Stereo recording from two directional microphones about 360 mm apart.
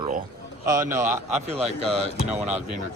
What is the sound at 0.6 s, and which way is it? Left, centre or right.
Speech, centre.